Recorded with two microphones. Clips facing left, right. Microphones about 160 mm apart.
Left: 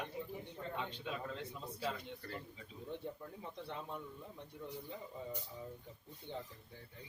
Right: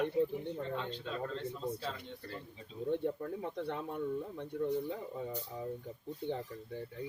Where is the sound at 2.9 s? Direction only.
65° right (ahead or behind).